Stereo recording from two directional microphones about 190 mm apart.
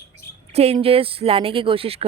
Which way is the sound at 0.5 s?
35° right (ahead or behind).